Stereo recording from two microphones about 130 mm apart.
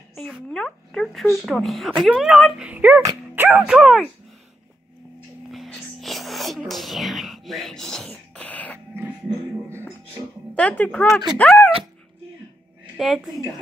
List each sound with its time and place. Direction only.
0.1 s speech: 5° left (ahead or behind)
3.0 s music: 20° right (ahead or behind)
5.5 s whispering: centre (ahead or behind)
9.0 s music: 20° right (ahead or behind)
10.5 s speech: 10° left (ahead or behind)
11.1 s speech: centre (ahead or behind)
11.3 s speech: 10° left (ahead or behind)
12.9 s a woman's voice: centre (ahead or behind)